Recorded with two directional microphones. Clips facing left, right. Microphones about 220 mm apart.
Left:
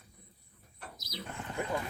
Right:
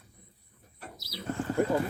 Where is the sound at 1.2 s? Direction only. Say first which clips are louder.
Right 10 dB; 40° right (ahead or behind).